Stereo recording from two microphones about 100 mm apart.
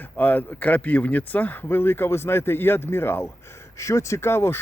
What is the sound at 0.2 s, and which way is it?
Speech, 15° left (ahead or behind).